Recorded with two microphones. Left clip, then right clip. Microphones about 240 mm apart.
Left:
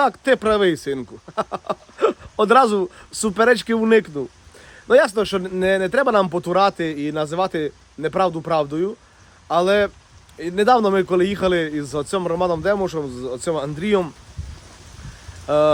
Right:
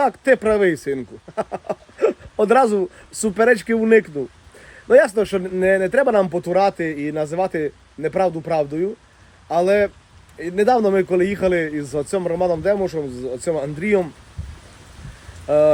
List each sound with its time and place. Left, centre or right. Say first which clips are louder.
0.0 s a man's voice: right 1 dB; centre
2.0 s a sound: even; centre
3.2 s a man's voice: even; centre
15.4 s speech: right 2 dB; centre